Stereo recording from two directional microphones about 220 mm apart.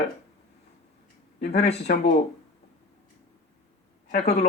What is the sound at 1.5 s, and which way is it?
Speech, 30° left (ahead or behind).